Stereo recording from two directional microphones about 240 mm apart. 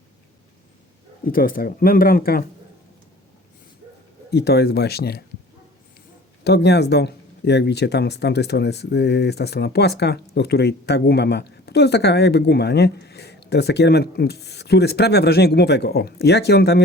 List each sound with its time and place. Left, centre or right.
1.2 s speech: left
4.3 s speech: left
6.4 s speech: left